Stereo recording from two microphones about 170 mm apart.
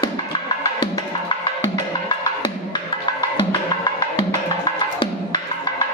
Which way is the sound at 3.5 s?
25° left (ahead or behind).